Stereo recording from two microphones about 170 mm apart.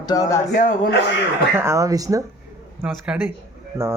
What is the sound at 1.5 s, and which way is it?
Speech, 15° right (ahead or behind).